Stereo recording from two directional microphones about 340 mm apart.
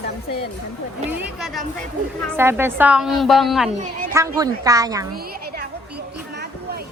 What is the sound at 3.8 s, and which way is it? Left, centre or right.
Speech, right.